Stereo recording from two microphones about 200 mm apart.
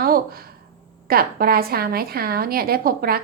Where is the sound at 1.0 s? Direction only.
50° right (ahead or behind).